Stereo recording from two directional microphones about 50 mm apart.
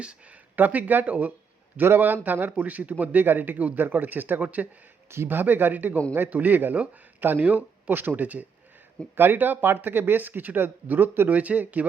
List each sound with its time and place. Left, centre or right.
0.5 s speech: right
1.7 s speech: right
2.6 s speech: right
5.1 s speech: right
5.4 s speech: right
11.3 s speech: right